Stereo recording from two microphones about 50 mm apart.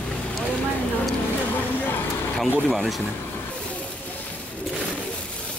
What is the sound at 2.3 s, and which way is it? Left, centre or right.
Speech, centre.